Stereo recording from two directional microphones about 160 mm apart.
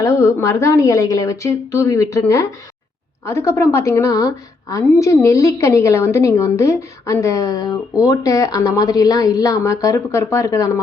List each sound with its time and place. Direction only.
0.0 s a woman's voice: 20° left (ahead or behind)